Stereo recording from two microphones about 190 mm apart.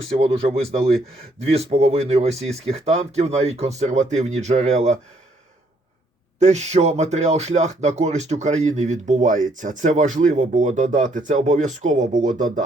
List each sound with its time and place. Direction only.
0.1 s speech: 30° right (ahead or behind)
6.4 s speech: 35° right (ahead or behind)